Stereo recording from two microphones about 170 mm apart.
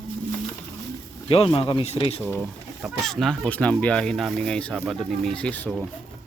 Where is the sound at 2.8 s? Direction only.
Centre (ahead or behind).